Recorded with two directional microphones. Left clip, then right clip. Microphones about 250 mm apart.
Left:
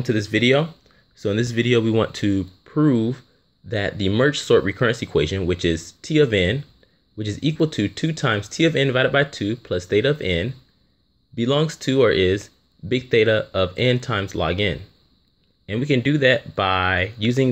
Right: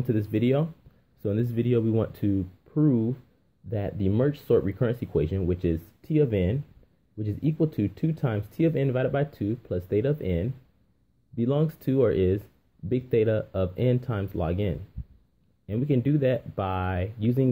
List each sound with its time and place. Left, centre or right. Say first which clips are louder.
0.0 s speech: left 7 dB; centre